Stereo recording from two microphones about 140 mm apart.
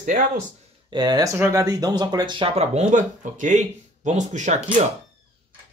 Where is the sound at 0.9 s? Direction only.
30° right (ahead or behind); by 4.8 s 60° right (ahead or behind).